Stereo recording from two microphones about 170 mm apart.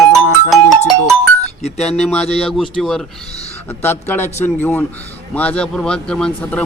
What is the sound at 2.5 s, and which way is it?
Ringtone, centre (ahead or behind).